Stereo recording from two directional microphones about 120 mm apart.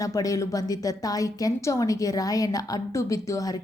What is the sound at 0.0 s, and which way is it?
A woman's voice, 30° left (ahead or behind).